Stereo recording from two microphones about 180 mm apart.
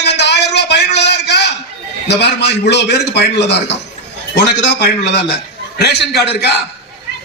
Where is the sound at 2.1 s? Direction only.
70° left (ahead or behind).